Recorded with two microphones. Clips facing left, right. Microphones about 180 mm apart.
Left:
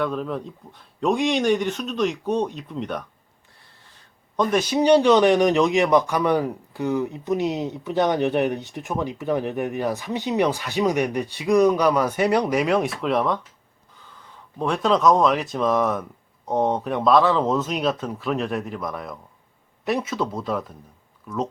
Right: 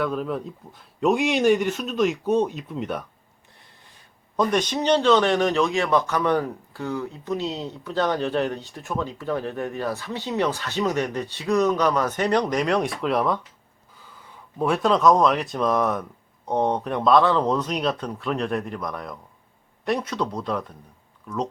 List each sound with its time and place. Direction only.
0.0 s speech: 5° right (ahead or behind)
4.4 s a man's voice: 5° left (ahead or behind)
14.6 s speech: centre (ahead or behind)